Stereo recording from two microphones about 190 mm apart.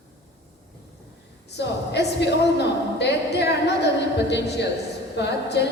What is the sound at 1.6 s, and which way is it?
A woman's voice, 65° left (ahead or behind).